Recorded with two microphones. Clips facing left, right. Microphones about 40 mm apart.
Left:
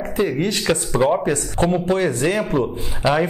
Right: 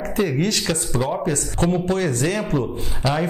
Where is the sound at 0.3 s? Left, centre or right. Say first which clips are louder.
Left 2 dB; centre.